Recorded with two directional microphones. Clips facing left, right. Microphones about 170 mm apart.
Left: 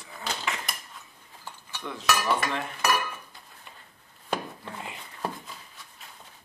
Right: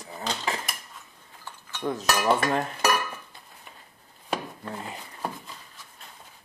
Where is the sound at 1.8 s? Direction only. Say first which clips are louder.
Right 3 dB; 45° right (ahead or behind).